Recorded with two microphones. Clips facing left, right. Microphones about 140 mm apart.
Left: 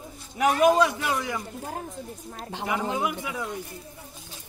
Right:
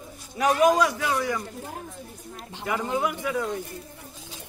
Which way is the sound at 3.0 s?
15° left (ahead or behind).